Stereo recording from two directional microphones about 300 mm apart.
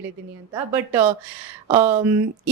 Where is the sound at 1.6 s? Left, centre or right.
Centre.